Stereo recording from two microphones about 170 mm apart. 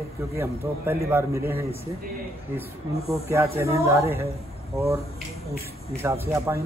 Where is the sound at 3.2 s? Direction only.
15° right (ahead or behind).